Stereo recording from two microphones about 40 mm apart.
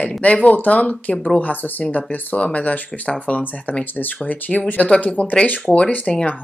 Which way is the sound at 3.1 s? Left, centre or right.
Left.